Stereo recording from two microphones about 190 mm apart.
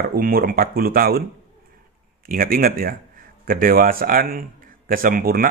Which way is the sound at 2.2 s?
50° right (ahead or behind).